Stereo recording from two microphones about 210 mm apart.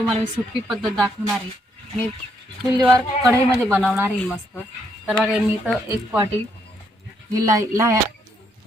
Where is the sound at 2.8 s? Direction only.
10° right (ahead or behind).